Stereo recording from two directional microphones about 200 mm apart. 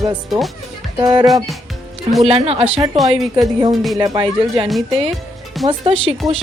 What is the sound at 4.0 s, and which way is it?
Speech, 25° right (ahead or behind).